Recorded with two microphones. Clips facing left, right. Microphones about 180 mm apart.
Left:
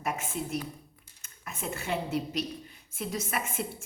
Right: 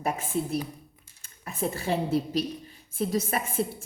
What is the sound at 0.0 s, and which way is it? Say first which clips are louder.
A woman's voice: right 5 dB; 30° right (ahead or behind).